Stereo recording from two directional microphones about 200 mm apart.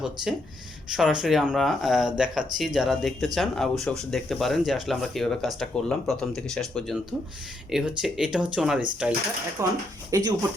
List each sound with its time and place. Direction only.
0.9 s speech: centre (ahead or behind); by 10.3 s 20° right (ahead or behind)